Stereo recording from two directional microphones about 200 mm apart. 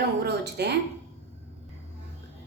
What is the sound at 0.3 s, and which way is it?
Speech, 55° right (ahead or behind).